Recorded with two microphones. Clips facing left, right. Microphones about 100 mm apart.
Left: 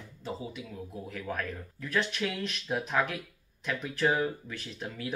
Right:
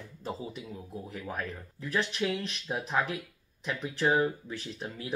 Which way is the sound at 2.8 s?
30° right (ahead or behind).